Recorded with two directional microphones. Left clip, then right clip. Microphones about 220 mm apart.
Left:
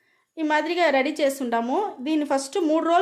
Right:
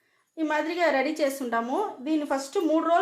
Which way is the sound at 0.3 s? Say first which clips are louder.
Left 4 dB; 40° left (ahead or behind).